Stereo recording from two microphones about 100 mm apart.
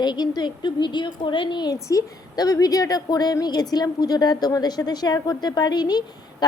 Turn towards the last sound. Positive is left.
turn(degrees=45)  # may be behind; listen again after turning